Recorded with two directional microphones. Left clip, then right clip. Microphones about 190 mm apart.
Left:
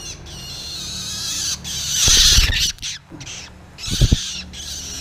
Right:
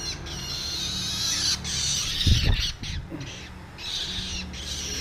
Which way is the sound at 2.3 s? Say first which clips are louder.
Left 11 dB; 55° left (ahead or behind).